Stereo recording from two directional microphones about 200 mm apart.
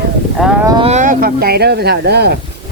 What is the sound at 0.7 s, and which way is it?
Speech, 30° right (ahead or behind).